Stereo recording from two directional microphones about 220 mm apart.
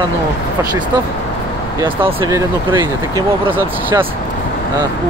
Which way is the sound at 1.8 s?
20° right (ahead or behind).